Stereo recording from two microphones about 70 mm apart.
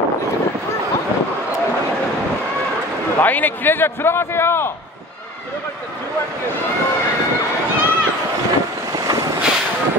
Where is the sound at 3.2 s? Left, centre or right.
Left.